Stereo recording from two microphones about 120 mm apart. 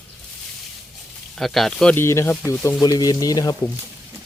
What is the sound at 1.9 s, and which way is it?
Speech, 20° left (ahead or behind).